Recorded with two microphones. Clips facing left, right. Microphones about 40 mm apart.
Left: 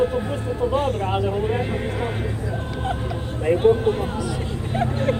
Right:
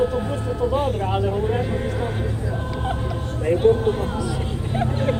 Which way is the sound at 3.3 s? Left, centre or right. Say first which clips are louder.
Even; centre.